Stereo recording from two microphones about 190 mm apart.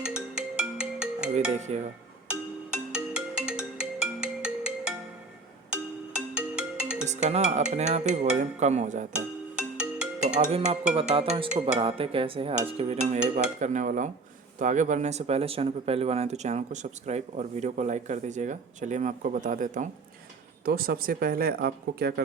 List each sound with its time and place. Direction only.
0.0 s music: 5° right (ahead or behind)
1.5 s speech: 35° right (ahead or behind)
2.2 s music: 5° right (ahead or behind)
7.0 s speech: 40° right (ahead or behind)
9.1 s music: 5° right (ahead or behind)
10.2 s speech: 35° right (ahead or behind); by 22.2 s 55° right (ahead or behind)